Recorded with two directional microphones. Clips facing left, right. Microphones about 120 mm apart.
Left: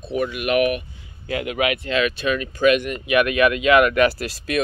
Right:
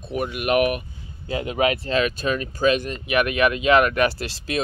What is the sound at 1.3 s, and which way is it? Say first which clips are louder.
Speech: right 1 dB; 30° right (ahead or behind).